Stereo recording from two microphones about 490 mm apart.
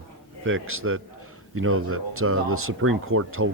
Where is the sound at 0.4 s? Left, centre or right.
Right.